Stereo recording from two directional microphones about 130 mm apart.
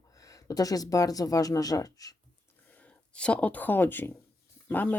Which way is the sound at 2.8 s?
10° left (ahead or behind).